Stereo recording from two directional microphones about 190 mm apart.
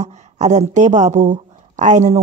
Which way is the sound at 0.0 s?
35° right (ahead or behind).